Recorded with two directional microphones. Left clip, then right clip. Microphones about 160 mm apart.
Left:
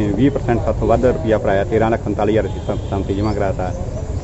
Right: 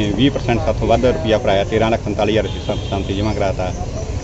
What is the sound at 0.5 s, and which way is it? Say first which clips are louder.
Speech: right 1 dB; 10° left (ahead or behind).